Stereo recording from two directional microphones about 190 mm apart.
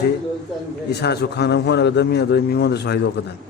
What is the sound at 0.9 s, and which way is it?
A man's voice, 60° left (ahead or behind).